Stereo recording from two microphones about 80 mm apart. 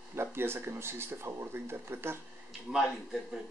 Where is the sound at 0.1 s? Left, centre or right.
Right.